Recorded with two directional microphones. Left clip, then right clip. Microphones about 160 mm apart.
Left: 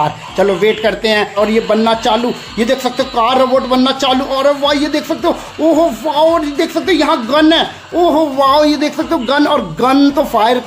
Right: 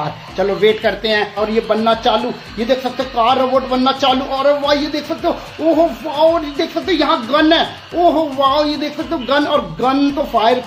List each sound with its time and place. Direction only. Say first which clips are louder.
0.0 s a man's voice: left 6 dB; 30° left (ahead or behind)